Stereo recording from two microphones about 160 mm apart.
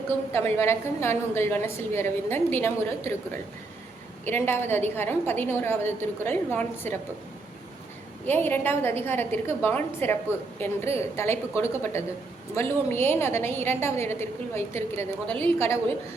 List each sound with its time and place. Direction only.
0.6 s a woman's voice: 15° left (ahead or behind)
4.3 s a woman's voice: 15° left (ahead or behind)
8.3 s a woman's voice: 10° left (ahead or behind)